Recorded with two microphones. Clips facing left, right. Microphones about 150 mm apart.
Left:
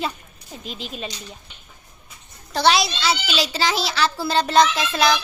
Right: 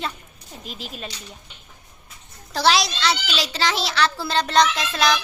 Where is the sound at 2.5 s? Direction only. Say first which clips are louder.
Left 1 dB; centre (ahead or behind).